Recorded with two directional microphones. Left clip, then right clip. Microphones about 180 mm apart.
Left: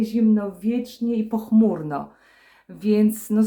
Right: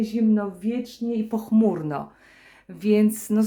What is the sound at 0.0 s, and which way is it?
Speech, 10° right (ahead or behind).